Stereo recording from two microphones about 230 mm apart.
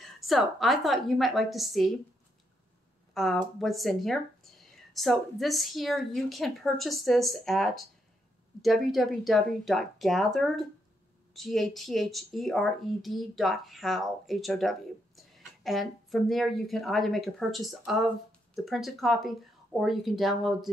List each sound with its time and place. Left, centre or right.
0.0 s speech: centre
3.2 s speech: centre